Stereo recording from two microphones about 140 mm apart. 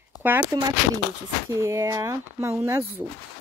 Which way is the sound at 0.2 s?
10° right (ahead or behind).